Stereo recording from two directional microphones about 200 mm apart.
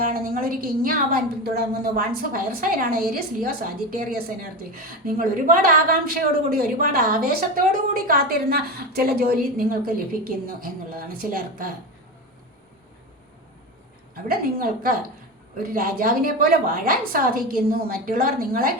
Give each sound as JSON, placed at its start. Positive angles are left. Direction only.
{"t": 0.0, "sound": "a woman's voice", "side_deg": -45}
{"t": 14.3, "sound": "a woman's voice", "side_deg": -45}